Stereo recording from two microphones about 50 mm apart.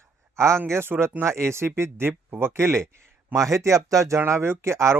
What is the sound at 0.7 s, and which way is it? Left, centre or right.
Speech, right.